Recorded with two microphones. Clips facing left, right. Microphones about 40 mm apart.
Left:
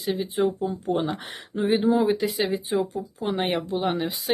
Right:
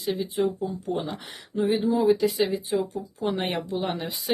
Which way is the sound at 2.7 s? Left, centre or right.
Centre.